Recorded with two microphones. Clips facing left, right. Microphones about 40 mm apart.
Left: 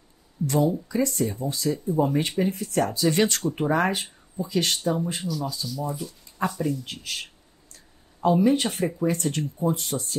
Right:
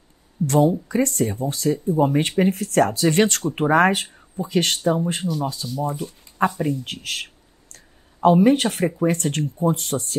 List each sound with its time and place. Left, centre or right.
0.7 s speech: right
6.8 s speech: right
7.7 s a sound: right
8.8 s speech: right
9.1 s speech: right
9.4 s speech: right